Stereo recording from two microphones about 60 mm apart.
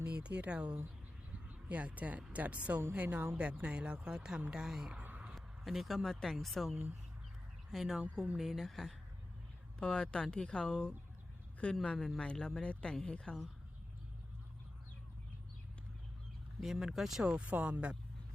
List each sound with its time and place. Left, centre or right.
0.0 s a woman's voice: right
4.9 s a sound: right
5.3 s a sound: centre
6.3 s speech: centre
9.8 s speech: centre
16.6 s speech: centre
17.2 s speech: right